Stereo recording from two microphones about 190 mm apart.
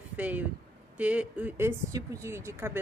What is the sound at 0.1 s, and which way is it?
A woman's voice, 10° right (ahead or behind).